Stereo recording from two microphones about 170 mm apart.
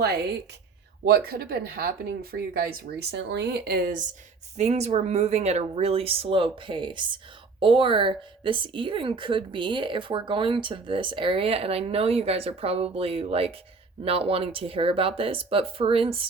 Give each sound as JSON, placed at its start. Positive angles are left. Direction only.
{"t": 1.0, "sound": "speech", "side_deg": -65}
{"t": 4.5, "sound": "a woman's voice", "side_deg": -40}